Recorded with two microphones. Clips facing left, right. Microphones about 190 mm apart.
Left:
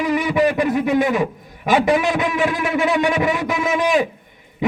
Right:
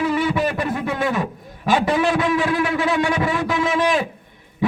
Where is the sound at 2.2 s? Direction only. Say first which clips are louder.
Right 1 dB; 20° left (ahead or behind).